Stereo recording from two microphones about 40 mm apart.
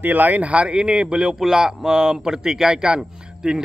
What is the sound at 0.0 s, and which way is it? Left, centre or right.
A man's voice, right.